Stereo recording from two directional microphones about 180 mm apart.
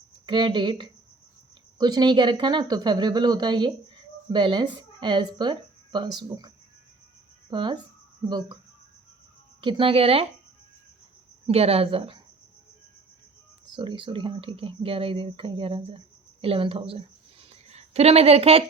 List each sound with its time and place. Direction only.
0.3 s speech: 25° right (ahead or behind)
7.5 s speech: 25° right (ahead or behind)
9.6 s speech: 30° right (ahead or behind)
11.4 s speech: 35° right (ahead or behind)
13.7 s speech: 25° right (ahead or behind)
17.5 s a sound: 35° right (ahead or behind)